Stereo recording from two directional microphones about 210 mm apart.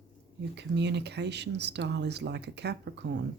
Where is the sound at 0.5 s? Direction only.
55° right (ahead or behind).